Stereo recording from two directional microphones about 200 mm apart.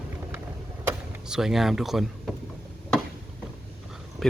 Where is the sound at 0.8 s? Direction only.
5° right (ahead or behind).